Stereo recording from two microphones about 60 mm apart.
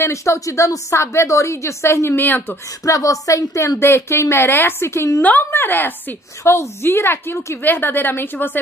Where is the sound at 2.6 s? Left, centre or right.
Left.